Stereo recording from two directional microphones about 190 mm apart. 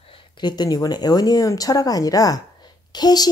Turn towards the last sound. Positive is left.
turn(degrees=20)  # may be behind; listen again after turning